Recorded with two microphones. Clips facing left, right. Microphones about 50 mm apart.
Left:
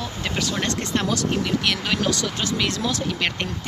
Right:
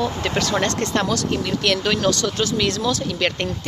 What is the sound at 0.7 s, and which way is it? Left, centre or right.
Speech, centre.